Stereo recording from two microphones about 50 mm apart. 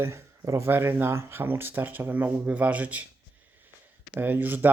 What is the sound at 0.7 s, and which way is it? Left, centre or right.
Speech, right.